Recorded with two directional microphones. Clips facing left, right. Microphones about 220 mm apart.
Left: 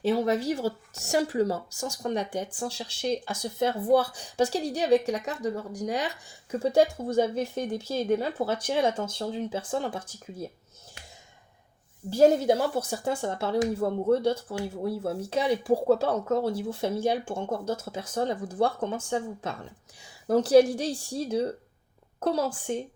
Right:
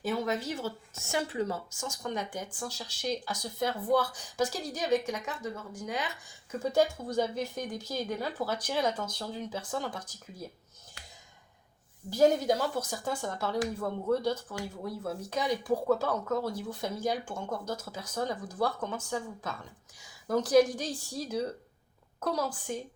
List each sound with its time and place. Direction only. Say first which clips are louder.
0.0 s speech: left 7 dB; 35° left (ahead or behind)
9.5 s speech: left 5 dB; 55° left (ahead or behind)
12.1 s speech: left 4 dB; 25° left (ahead or behind)